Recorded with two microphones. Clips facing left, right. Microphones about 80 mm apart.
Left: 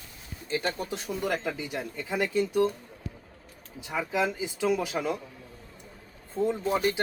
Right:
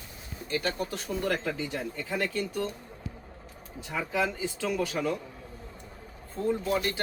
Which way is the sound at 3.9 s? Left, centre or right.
Centre.